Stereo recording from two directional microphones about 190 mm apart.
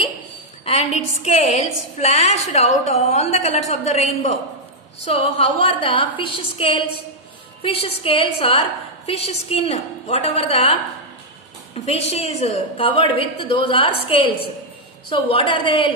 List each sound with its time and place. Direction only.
0.7 s a woman's voice: 35° left (ahead or behind)
11.7 s a woman's voice: 35° left (ahead or behind)